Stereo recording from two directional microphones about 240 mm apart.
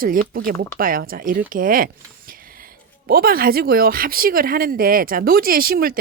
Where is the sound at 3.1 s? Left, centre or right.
Right.